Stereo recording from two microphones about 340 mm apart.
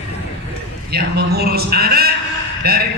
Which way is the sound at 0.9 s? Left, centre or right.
Right.